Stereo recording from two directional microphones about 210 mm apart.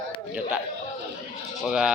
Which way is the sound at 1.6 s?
Centre (ahead or behind).